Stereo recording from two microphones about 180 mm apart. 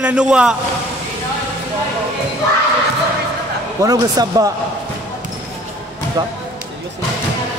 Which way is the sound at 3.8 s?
20° right (ahead or behind).